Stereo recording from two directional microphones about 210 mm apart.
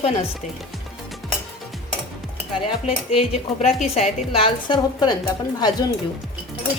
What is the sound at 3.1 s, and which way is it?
Speech, 30° left (ahead or behind).